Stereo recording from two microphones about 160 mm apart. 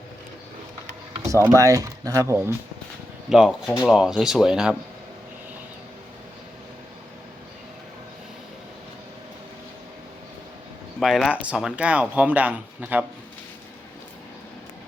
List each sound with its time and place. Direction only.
1.3 s speech: 15° right (ahead or behind)
3.2 s speech: 5° right (ahead or behind)
11.0 s speech: centre (ahead or behind)